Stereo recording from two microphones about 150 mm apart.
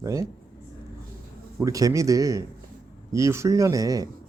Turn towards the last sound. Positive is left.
turn(degrees=-25)  # may be behind; listen again after turning